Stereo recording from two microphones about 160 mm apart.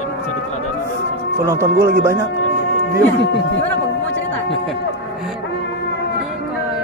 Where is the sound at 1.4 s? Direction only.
15° right (ahead or behind).